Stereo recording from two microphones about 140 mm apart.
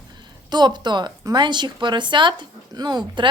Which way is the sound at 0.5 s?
30° right (ahead or behind).